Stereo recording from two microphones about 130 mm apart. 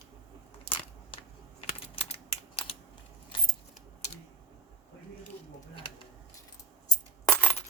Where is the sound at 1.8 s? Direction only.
50° left (ahead or behind).